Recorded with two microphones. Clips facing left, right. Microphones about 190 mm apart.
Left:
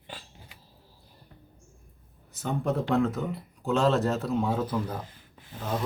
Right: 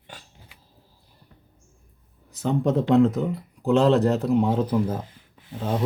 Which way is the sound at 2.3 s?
90° right.